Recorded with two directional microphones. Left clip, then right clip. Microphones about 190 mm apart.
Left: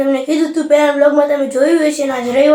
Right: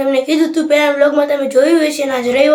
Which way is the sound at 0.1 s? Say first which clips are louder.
Right 1 dB; 10° right (ahead or behind).